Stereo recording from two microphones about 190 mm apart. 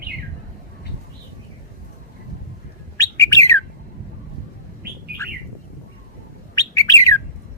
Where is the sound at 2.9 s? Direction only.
15° left (ahead or behind).